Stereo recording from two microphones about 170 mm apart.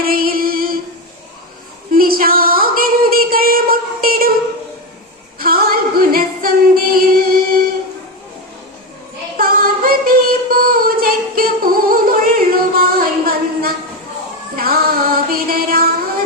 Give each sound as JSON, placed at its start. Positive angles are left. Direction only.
{"t": 0.0, "sound": "music", "side_deg": -60}
{"t": 1.9, "sound": "music", "side_deg": -60}
{"t": 5.4, "sound": "a sound", "side_deg": -60}
{"t": 9.4, "sound": "female singing", "side_deg": -55}
{"t": 14.5, "sound": "music", "side_deg": -60}